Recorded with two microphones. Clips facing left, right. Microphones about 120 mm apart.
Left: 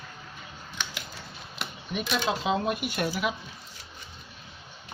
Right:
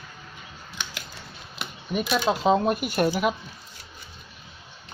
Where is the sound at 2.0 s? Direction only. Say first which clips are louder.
Right 4 dB; 10° right (ahead or behind).